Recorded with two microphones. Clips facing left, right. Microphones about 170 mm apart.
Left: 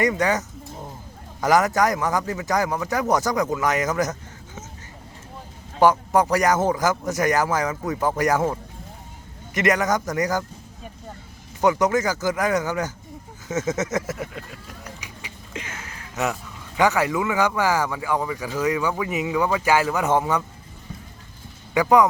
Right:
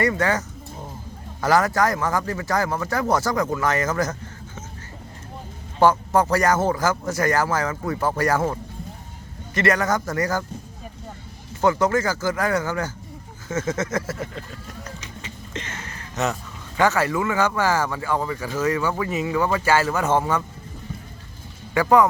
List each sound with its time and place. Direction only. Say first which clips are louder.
0.0 s a man's voice: even; 15° left (ahead or behind)
5.8 s a man's voice: even; 15° left (ahead or behind)
9.6 s a man's voice: even; 15° left (ahead or behind)
11.6 s a man's voice: even; 15° left (ahead or behind)
13.5 s a sound: left 1 dB; 20° left (ahead or behind)
14.8 s speech: right 2 dB; 10° left (ahead or behind)
21.8 s a man's voice: even; 15° left (ahead or behind)